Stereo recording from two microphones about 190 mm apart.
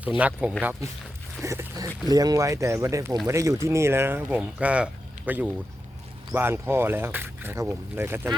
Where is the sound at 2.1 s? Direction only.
20° right (ahead or behind).